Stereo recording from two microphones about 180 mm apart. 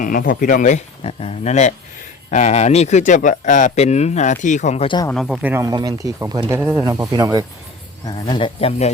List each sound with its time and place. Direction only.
0.0 s speech: 50° left (ahead or behind)
5.1 s speech: centre (ahead or behind)
5.6 s speech: 20° right (ahead or behind)
6.6 s speech: 5° right (ahead or behind)
6.8 s speech: 20° right (ahead or behind)
8.0 s speech: 25° left (ahead or behind)